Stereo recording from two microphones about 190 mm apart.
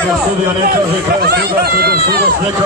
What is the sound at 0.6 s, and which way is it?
Speech, 50° right (ahead or behind).